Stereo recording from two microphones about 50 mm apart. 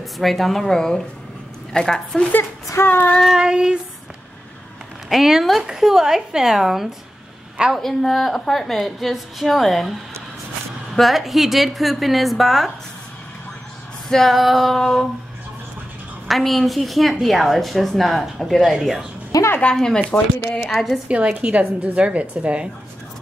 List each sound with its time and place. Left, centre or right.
0.2 s a woman's voice: centre
2.8 s child singing: left
3.2 s a woman's voice: centre
5.1 s a woman's voice: centre
14.0 s a woman's voice: centre
16.3 s a woman's voice: centre
19.7 s a woman's voice: centre
20.0 s speech: left
20.6 s a woman's voice: centre
21.1 s a woman's voice: right